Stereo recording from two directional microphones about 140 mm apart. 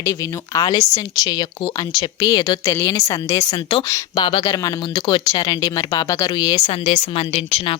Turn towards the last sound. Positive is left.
turn(degrees=45)  # may be behind; listen again after turning